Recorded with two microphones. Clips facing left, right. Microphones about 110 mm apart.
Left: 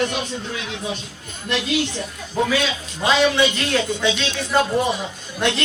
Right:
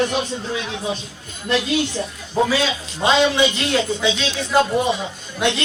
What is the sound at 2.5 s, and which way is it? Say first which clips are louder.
A man's voice: right 1 dB; 30° right (ahead or behind).